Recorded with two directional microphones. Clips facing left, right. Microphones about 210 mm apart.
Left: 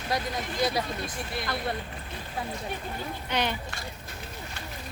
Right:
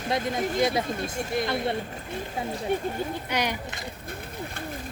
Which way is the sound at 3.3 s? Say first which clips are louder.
Right 1 dB; 10° right (ahead or behind).